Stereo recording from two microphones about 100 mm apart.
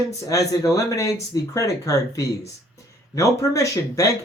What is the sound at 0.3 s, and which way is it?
Speech, 35° left (ahead or behind).